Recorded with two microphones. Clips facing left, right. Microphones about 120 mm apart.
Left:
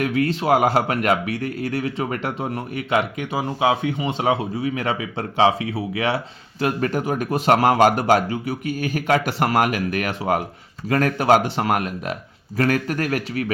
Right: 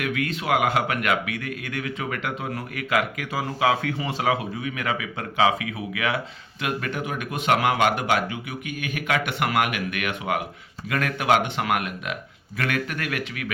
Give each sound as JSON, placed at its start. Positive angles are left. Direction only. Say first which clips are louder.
{"t": 0.0, "sound": "speech", "louder": "left 6 dB", "side_deg": 35}